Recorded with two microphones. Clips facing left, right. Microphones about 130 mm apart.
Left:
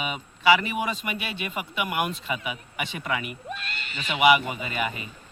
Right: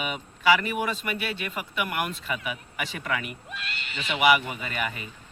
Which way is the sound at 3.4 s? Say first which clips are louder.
Left 3 dB; 40° left (ahead or behind).